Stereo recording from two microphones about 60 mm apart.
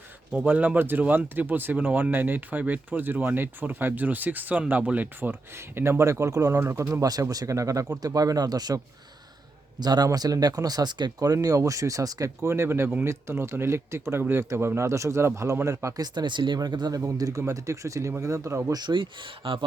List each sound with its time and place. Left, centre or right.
0.4 s speech: right
5.8 s speech: right
6.7 s speech: right
7.0 s speech: right
8.0 s speech: right
10.1 s speech: right
12.4 s speech: right
16.6 s speech: right
17.1 s speech: right